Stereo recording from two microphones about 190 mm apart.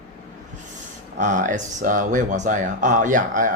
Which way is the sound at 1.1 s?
40° right (ahead or behind).